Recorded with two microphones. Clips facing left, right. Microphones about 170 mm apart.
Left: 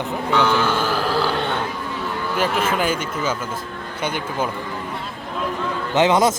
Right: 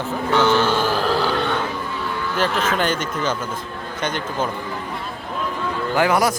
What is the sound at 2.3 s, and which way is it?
A man's voice, 10° left (ahead or behind).